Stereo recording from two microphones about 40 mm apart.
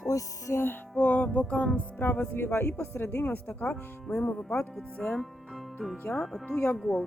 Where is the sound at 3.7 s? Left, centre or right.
Left.